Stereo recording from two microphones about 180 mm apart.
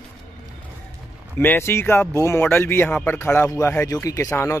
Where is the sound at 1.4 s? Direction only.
15° left (ahead or behind).